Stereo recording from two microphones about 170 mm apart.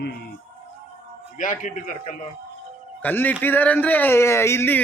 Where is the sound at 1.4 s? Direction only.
50° left (ahead or behind).